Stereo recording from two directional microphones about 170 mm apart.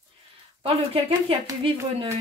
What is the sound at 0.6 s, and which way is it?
Speech, 35° right (ahead or behind).